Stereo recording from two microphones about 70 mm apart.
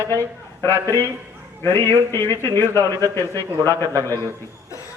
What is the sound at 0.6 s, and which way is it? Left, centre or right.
A man's voice, left.